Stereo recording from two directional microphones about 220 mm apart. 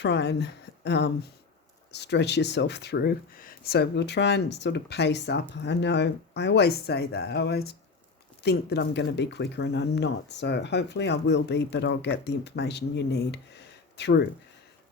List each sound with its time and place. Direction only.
0.0 s speech: 50° left (ahead or behind)